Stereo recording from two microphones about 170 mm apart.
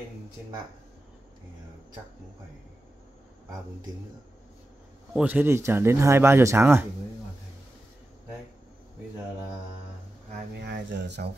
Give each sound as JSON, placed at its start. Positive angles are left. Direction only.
{"t": 5.1, "sound": "speech", "side_deg": -10}
{"t": 10.5, "sound": "speech", "side_deg": -85}